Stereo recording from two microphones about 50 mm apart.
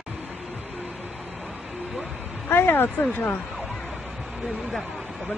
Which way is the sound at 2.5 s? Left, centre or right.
Left.